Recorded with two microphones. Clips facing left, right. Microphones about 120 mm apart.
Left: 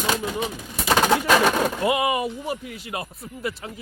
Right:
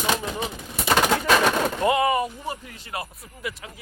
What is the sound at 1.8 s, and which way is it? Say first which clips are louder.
Speech: right 3 dB; 15° left (ahead or behind).